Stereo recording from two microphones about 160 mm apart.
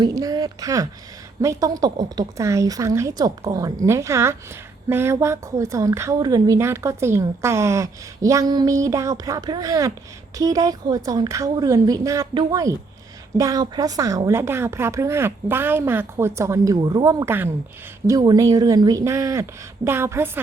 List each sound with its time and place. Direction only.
0.0 s a woman's voice: 25° right (ahead or behind)